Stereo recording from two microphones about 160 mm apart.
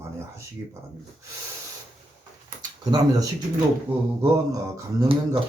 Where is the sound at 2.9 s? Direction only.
25° right (ahead or behind).